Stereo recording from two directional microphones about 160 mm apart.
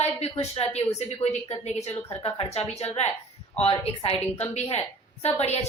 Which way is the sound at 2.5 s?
40° left (ahead or behind).